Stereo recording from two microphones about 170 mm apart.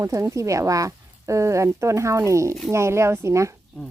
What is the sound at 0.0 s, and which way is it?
Speech, 15° right (ahead or behind).